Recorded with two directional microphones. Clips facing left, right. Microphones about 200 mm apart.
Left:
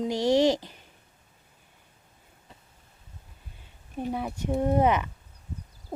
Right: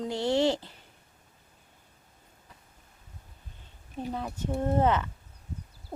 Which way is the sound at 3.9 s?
15° left (ahead or behind).